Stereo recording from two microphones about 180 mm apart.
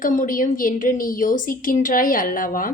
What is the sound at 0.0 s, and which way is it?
A woman's voice, 45° left (ahead or behind).